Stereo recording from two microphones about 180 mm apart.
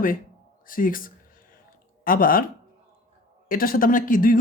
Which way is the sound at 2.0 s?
50° left (ahead or behind).